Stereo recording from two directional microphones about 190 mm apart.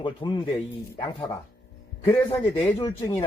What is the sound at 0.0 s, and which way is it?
Speech, 25° left (ahead or behind).